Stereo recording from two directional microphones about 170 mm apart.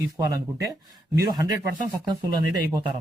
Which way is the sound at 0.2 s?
20° right (ahead or behind).